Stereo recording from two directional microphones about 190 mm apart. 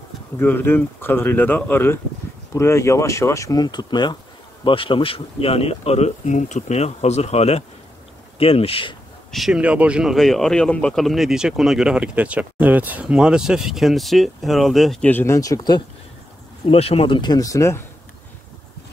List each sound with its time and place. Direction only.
0.4 s speech: 10° left (ahead or behind); by 8.9 s 30° left (ahead or behind)
9.3 s speech: 5° right (ahead or behind); by 15.8 s 20° left (ahead or behind)
16.6 s speech: 30° left (ahead or behind); by 17.8 s 15° left (ahead or behind)